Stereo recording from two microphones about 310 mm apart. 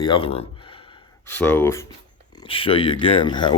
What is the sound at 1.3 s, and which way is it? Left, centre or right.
Speech, centre.